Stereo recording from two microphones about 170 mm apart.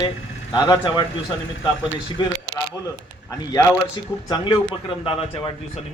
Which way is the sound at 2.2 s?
25° left (ahead or behind).